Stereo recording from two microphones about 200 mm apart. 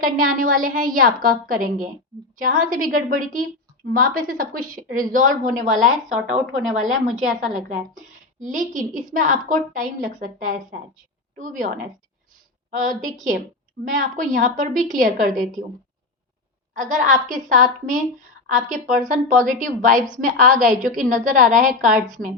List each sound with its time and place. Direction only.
0.0 s a woman's voice: 45° right (ahead or behind)
6.4 s a woman's voice: centre (ahead or behind)
8.4 s a woman's voice: 40° right (ahead or behind)
16.7 s a woman's voice: 40° right (ahead or behind)